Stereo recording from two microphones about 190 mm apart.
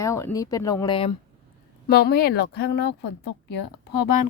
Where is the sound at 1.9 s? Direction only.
55° left (ahead or behind).